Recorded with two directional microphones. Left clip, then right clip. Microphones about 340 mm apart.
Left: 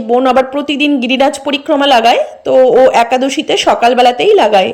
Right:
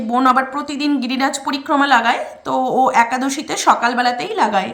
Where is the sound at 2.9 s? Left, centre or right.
Centre.